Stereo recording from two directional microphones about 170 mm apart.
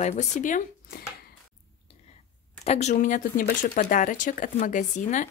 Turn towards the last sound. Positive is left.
turn(degrees=45)  # may be behind; listen again after turning